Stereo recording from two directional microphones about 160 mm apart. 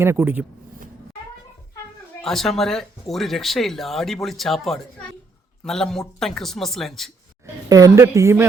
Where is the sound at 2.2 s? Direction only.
Centre (ahead or behind).